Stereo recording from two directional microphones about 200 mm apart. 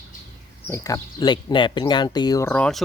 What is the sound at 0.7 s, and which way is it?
Speech, 15° left (ahead or behind).